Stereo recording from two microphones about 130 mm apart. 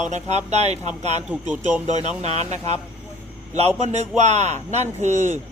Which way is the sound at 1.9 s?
35° left (ahead or behind).